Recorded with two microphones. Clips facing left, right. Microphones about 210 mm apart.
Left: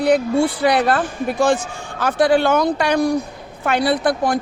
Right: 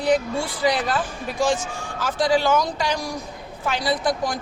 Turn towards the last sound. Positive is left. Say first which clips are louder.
# left 5 dB
turn(degrees=60)  # may be behind; listen again after turning